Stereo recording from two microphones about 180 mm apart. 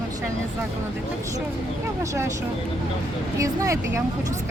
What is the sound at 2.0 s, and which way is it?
Speech, 15° right (ahead or behind).